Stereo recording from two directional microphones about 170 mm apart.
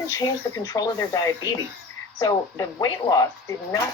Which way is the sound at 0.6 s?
20° left (ahead or behind).